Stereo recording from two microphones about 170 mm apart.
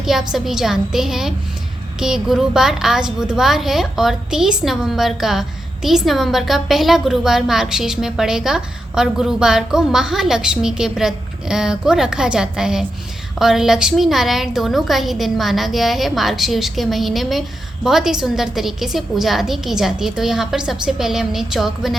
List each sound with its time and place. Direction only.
0.0 s a woman's voice: centre (ahead or behind)